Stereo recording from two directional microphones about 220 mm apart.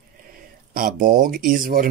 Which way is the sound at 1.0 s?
40° right (ahead or behind).